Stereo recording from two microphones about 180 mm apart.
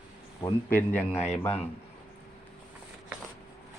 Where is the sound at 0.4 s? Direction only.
10° left (ahead or behind).